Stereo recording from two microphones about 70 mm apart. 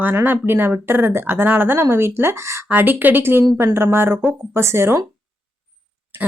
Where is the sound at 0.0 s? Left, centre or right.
Right.